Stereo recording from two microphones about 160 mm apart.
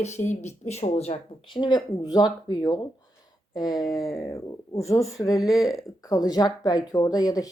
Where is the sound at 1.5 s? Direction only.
25° left (ahead or behind).